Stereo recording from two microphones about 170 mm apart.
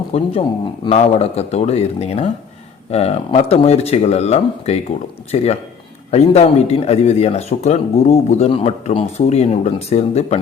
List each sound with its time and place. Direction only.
0.1 s speech: 35° left (ahead or behind)